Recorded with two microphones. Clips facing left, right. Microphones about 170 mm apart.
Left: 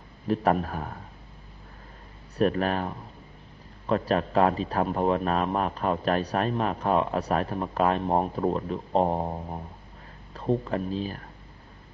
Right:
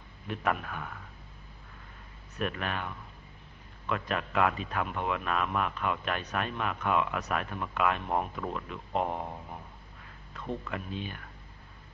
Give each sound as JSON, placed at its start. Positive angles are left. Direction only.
{"t": 0.3, "sound": "a man's voice", "side_deg": 35}
{"t": 2.3, "sound": "a man's voice", "side_deg": 35}